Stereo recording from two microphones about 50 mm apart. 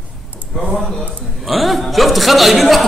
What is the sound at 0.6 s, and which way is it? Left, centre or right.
A man's voice, centre.